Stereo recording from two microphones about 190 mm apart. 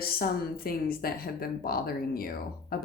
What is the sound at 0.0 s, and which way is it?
Speech, 50° left (ahead or behind).